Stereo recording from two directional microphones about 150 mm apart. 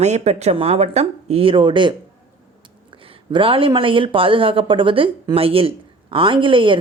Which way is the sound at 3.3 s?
35° right (ahead or behind).